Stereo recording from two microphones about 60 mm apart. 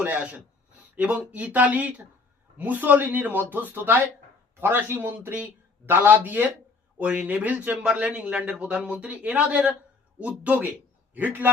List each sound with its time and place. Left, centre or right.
0.0 s a man's voice: right